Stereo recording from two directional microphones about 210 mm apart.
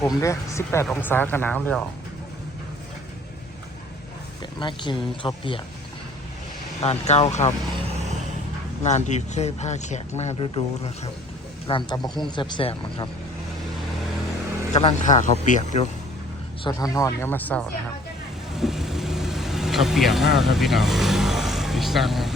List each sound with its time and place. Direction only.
0.1 s speech: 15° left (ahead or behind)
4.6 s speech: 20° left (ahead or behind)
6.8 s speech: 30° left (ahead or behind)
8.8 s speech: 35° left (ahead or behind)
14.7 s speech: 30° left (ahead or behind)
16.6 s speech: 15° left (ahead or behind)
18.5 s vehicle: centre (ahead or behind)